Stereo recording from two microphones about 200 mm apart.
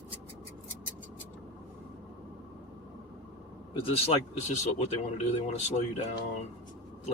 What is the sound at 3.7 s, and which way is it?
Speech, 30° left (ahead or behind).